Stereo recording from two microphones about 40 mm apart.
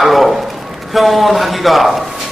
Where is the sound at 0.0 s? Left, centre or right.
Centre.